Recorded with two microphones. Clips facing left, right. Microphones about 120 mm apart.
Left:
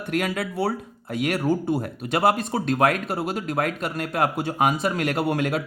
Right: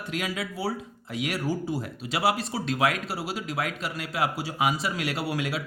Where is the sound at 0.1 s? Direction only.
55° left (ahead or behind).